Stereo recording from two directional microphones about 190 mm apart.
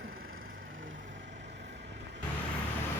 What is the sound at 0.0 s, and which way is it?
Vehicle, 90° right.